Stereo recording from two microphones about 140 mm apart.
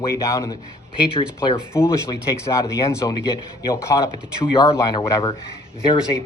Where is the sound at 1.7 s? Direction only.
20° left (ahead or behind).